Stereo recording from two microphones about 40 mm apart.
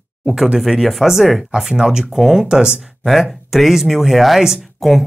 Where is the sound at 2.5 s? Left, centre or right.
Right.